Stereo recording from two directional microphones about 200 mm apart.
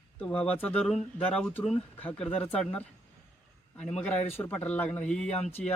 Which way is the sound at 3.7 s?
5° left (ahead or behind).